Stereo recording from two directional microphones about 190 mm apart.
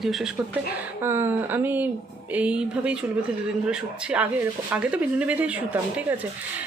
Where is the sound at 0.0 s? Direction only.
Centre (ahead or behind).